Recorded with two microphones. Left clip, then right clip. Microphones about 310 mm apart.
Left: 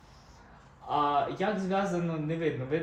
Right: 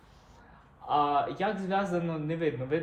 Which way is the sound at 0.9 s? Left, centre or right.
Centre.